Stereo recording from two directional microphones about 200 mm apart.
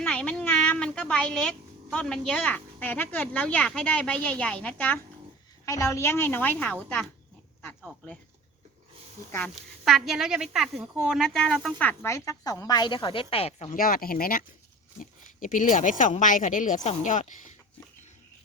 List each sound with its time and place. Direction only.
0.0 s speech: 5° left (ahead or behind)
9.3 s speech: centre (ahead or behind); by 13.7 s 30° left (ahead or behind)
13.7 s speech: 45° left (ahead or behind)